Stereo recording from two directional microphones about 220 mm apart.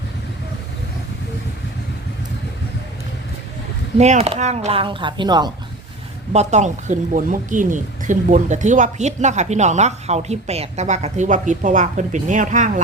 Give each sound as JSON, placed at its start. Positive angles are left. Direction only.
{"t": 3.9, "sound": "speech", "side_deg": -30}
{"t": 6.3, "sound": "speech", "side_deg": -30}